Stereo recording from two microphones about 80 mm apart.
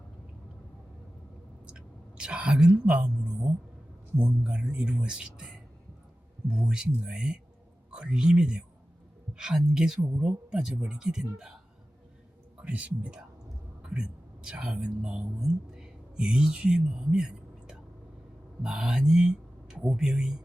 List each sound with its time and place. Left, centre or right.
1.6 s whispering: centre
4.2 s speech: centre
12.6 s speech: centre